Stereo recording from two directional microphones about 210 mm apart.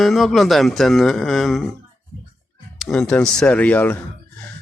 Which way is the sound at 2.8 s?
5° left (ahead or behind).